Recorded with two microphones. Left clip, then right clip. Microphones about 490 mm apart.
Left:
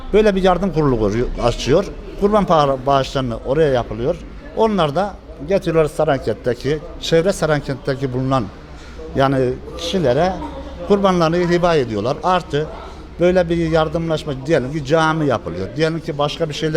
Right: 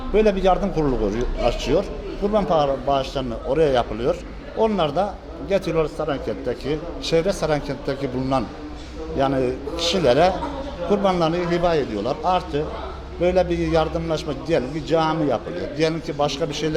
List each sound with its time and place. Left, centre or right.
0.1 s a man's voice: left